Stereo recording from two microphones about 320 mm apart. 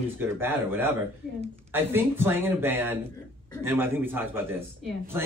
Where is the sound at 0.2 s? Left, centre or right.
Centre.